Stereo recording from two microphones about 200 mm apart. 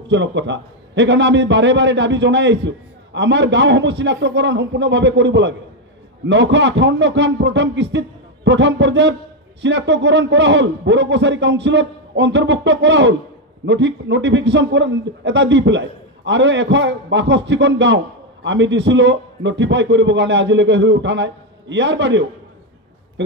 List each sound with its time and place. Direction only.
0.1 s a man's voice: 65° right (ahead or behind)